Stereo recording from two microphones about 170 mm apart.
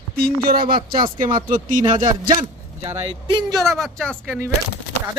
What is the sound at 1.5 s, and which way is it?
Speech, 50° right (ahead or behind).